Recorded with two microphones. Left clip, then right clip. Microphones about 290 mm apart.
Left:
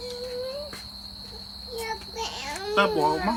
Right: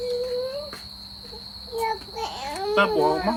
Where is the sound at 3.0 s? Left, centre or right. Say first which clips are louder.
Right 2 dB; centre.